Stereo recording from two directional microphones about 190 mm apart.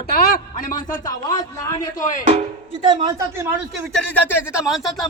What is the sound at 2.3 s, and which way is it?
Speech, 30° right (ahead or behind).